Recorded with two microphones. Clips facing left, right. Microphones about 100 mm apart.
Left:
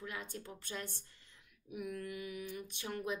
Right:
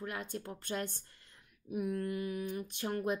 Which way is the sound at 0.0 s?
50° right (ahead or behind).